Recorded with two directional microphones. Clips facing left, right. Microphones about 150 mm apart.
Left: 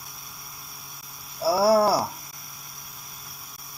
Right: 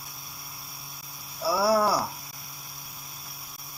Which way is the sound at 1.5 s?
35° left (ahead or behind).